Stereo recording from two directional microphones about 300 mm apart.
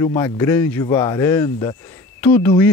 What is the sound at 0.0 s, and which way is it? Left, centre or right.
Speech, centre.